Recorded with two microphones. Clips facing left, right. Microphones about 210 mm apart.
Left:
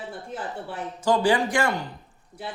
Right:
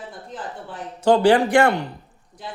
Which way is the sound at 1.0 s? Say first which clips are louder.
Right 6 dB; 65° right (ahead or behind).